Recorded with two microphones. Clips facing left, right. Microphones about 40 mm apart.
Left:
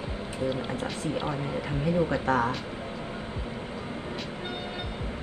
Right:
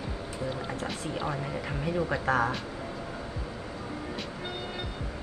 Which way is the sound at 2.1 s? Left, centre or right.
Centre.